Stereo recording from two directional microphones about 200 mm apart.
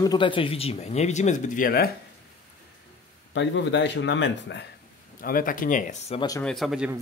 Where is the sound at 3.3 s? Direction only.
65° left (ahead or behind).